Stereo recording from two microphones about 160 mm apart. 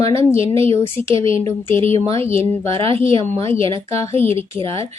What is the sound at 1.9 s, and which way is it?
Speech, 35° right (ahead or behind).